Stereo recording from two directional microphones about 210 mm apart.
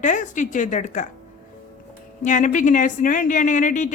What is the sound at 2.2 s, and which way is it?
A woman's voice, 35° left (ahead or behind).